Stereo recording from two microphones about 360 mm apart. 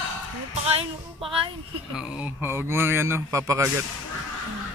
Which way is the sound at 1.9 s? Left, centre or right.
Centre.